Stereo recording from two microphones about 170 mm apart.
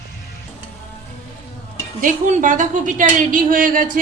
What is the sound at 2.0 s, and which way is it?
A woman's voice, 50° right (ahead or behind).